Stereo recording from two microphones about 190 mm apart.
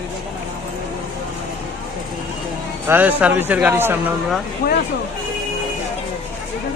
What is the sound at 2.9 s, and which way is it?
A man's voice, 10° right (ahead or behind).